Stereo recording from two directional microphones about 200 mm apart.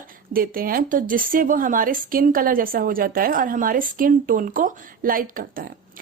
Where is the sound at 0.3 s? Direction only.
45° right (ahead or behind).